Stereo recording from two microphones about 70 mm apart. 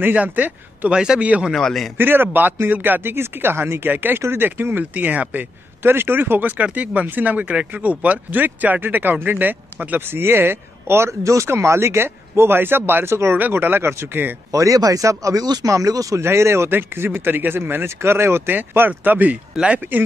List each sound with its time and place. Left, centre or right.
0.0 s a man's voice: right
1.5 s a man's voice: centre
2.0 s a man's voice: right
14.5 s speech: right
15.4 s speech: right
15.7 s speech: right; by 19.8 s centre